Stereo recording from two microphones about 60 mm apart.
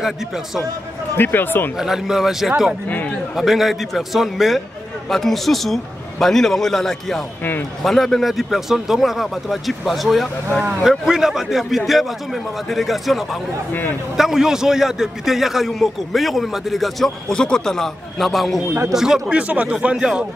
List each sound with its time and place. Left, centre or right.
1.1 s speech: left
1.8 s a man's voice: centre
17.3 s a man's voice: centre
19.4 s speech: right